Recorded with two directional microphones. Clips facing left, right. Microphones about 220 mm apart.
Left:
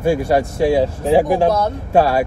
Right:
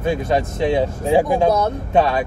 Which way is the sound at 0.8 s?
30° left (ahead or behind).